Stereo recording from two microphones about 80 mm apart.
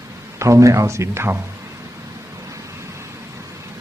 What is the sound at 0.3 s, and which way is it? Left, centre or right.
A man's voice, right.